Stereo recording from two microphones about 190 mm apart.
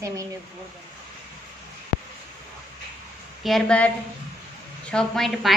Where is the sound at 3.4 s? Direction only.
5° left (ahead or behind).